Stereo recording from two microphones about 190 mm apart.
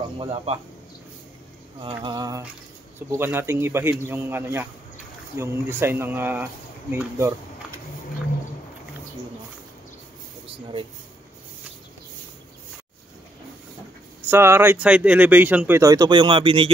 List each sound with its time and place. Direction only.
0.2 s speech: 30° right (ahead or behind)
2.0 s a sound: 20° right (ahead or behind)
3.1 s speech: 10° right (ahead or behind)
14.3 s speech: 10° right (ahead or behind)